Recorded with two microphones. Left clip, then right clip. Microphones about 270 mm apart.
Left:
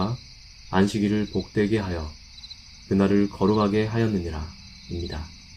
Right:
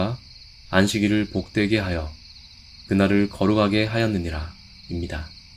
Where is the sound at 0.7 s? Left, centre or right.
Right.